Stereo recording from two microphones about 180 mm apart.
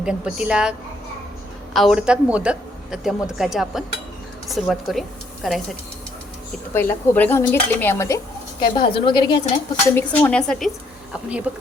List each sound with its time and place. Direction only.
0.0 s speech: 5° right (ahead or behind)
6.7 s speech: 10° left (ahead or behind)
8.6 s a woman's voice: 25° left (ahead or behind)
9.8 s speech: 10° left (ahead or behind)
11.5 s speech: 5° right (ahead or behind)